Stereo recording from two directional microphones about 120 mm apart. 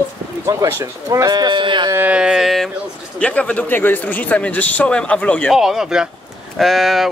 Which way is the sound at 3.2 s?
10° left (ahead or behind).